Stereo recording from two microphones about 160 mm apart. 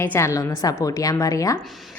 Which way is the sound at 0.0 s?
15° left (ahead or behind).